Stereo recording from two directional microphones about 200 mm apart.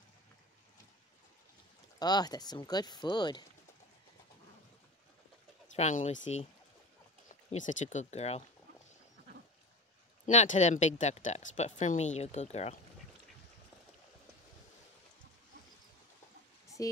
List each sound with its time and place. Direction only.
2.0 s speech: 20° left (ahead or behind)
5.8 s speech: 35° left (ahead or behind)
7.6 s speech: 35° left (ahead or behind)
10.2 s speech: 40° left (ahead or behind)